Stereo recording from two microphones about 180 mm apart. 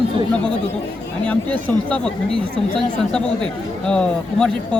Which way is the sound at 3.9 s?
5° left (ahead or behind).